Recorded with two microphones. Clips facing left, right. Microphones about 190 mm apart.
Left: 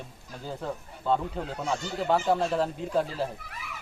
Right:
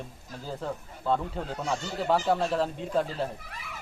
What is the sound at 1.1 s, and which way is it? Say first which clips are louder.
Speech: left 1 dB; centre (ahead or behind).